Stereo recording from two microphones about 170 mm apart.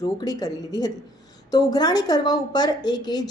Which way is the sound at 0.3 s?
20° left (ahead or behind).